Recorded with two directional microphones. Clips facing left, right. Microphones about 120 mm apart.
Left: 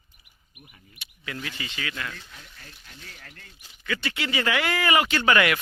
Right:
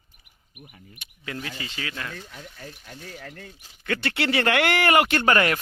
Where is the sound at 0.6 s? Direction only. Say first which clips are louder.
Right 3 dB; 45° right (ahead or behind).